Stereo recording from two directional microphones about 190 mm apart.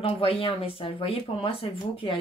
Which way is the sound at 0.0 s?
30° left (ahead or behind).